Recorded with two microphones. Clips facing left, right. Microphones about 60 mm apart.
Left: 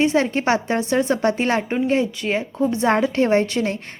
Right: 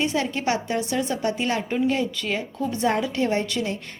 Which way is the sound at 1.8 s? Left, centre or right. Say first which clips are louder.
Left 4 dB; left.